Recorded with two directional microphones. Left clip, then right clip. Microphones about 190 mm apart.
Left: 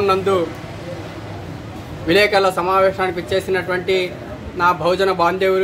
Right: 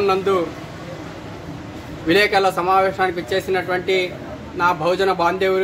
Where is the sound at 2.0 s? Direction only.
Centre (ahead or behind).